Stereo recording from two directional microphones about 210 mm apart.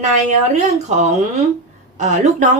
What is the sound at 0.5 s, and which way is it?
Speech, 30° right (ahead or behind).